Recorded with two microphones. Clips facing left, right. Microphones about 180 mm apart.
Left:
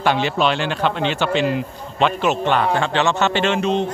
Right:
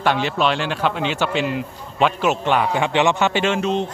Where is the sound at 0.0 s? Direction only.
Centre (ahead or behind).